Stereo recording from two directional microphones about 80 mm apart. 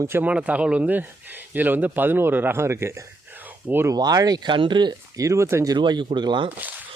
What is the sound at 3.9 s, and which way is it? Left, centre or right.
Speech, right.